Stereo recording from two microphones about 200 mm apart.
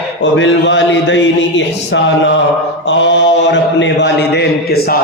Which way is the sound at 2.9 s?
65° left (ahead or behind).